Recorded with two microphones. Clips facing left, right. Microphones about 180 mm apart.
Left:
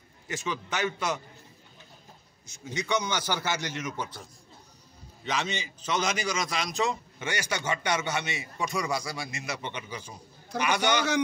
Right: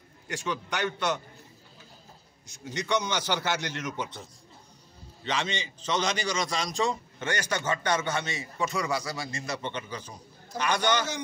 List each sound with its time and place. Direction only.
0.3 s a man's voice: 5° left (ahead or behind)
2.6 s a man's voice: 10° left (ahead or behind)
5.2 s a man's voice: 10° left (ahead or behind)